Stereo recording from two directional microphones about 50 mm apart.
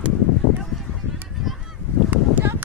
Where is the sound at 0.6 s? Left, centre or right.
Centre.